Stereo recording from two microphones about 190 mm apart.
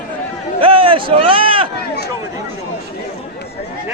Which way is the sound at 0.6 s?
25° right (ahead or behind).